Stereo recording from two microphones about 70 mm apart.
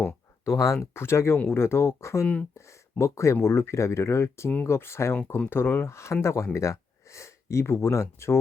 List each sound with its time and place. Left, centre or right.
0.4 s speech: left
2.2 s speech: centre
2.6 s speech: left